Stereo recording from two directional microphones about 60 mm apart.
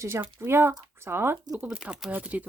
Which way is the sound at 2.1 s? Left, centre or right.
Right.